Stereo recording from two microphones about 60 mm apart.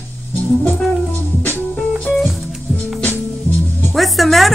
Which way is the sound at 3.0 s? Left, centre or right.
Left.